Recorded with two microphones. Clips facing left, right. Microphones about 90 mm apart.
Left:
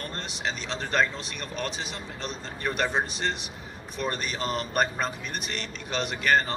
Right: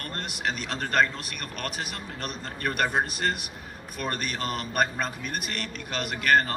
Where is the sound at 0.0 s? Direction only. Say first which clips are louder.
Even; 55° right (ahead or behind).